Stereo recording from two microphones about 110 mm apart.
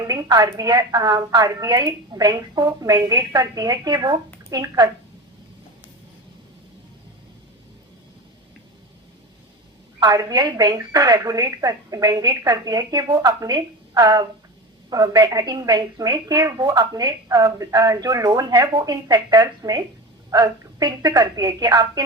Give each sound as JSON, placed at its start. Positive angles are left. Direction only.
{"t": 0.1, "sound": "speech", "side_deg": -35}
{"t": 10.0, "sound": "speech", "side_deg": -35}